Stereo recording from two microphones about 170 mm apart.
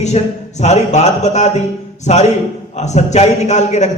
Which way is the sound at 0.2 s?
40° left (ahead or behind).